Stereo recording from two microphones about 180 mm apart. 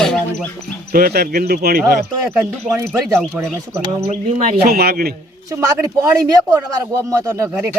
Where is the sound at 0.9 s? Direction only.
60° right (ahead or behind).